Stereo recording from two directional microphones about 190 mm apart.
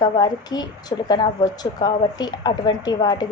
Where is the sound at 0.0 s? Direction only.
20° left (ahead or behind).